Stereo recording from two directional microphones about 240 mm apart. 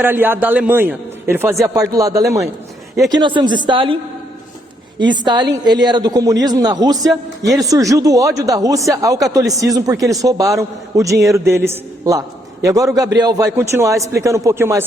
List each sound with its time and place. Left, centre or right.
0.0 s a man's voice: centre
4.9 s a man's voice: centre
6.9 s a man's voice: centre
7.6 s a man's voice: centre